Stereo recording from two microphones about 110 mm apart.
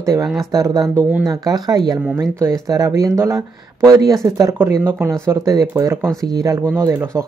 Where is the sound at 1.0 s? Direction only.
15° right (ahead or behind).